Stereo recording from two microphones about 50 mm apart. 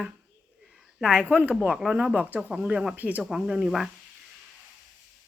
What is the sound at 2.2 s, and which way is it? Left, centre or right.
Speech, right.